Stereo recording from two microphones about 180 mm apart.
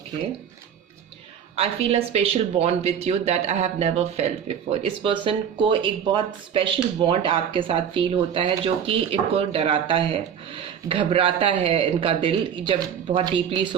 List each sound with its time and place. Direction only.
1.5 s speech: 35° right (ahead or behind)